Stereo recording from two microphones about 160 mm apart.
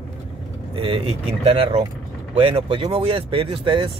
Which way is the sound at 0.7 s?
35° right (ahead or behind).